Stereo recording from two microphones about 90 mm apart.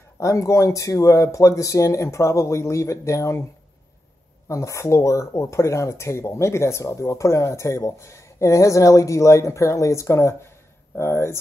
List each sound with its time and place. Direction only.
0.2 s speech: 35° left (ahead or behind)
4.5 s speech: 35° left (ahead or behind)